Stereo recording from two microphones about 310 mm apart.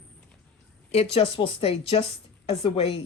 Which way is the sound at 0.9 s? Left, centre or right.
Centre.